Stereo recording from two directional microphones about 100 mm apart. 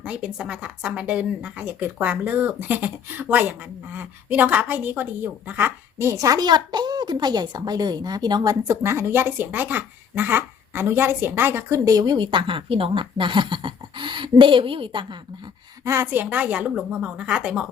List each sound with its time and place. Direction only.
0.0 s a woman's voice: 10° right (ahead or behind); by 15.2 s 55° right (ahead or behind)
15.8 s a woman's voice: 25° right (ahead or behind); by 17.7 s 5° right (ahead or behind)